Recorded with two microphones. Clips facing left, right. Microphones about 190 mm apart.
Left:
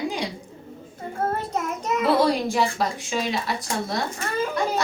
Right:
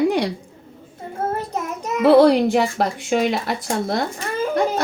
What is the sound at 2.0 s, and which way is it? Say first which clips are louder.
Speech: right 9 dB; 65° right (ahead or behind).